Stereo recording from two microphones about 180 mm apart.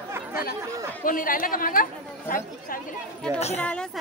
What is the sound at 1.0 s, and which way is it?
Speech, 50° left (ahead or behind).